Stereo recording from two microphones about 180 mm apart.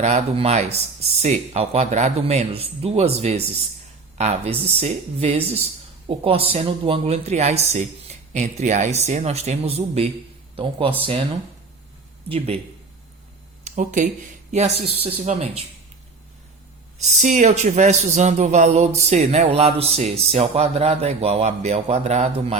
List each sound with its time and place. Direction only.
0.0 s speech: 35° right (ahead or behind)
13.7 s speech: 45° right (ahead or behind)
17.2 s speech: 45° right (ahead or behind)